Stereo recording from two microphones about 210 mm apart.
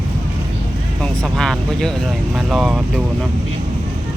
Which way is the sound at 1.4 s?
Centre (ahead or behind).